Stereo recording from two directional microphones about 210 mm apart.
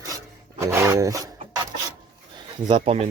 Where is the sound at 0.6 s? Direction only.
15° right (ahead or behind).